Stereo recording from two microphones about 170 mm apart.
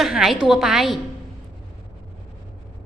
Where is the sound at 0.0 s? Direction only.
Centre (ahead or behind).